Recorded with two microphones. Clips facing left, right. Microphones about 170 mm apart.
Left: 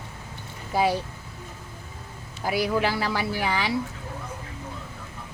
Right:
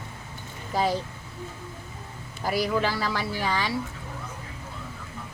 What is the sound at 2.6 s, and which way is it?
A woman's voice, 10° left (ahead or behind).